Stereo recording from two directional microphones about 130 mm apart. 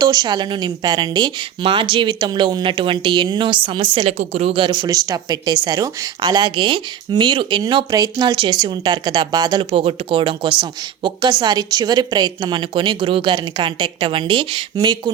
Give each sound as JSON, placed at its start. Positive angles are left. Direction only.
{"t": 0.0, "sound": "speech", "side_deg": -30}
{"t": 4.0, "sound": "a woman's voice", "side_deg": -60}